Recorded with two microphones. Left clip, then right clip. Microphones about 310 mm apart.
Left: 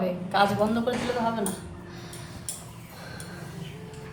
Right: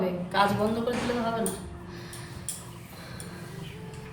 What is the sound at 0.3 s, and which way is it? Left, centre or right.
Speech, centre.